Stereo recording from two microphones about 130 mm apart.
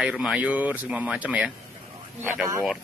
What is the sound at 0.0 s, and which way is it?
Speech, 5° right (ahead or behind).